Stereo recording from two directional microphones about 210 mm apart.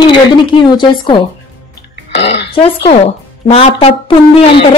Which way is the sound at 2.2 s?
55° left (ahead or behind).